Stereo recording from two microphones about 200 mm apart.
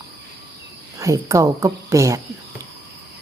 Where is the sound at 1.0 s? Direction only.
15° right (ahead or behind).